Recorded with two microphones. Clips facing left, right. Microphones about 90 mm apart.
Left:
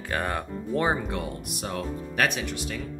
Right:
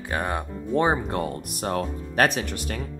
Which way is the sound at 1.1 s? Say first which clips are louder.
Right 4 dB; 45° right (ahead or behind).